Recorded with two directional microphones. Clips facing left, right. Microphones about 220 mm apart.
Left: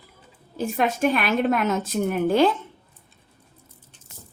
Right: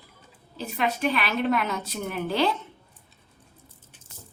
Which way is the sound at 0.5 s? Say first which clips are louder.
Left 4 dB; 50° left (ahead or behind).